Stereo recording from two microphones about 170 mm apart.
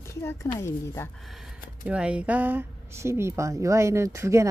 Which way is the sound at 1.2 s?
Centre (ahead or behind).